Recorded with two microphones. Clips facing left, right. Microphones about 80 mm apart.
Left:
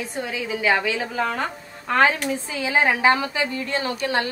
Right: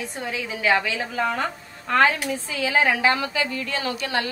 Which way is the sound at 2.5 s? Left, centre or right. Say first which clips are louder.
Even; left.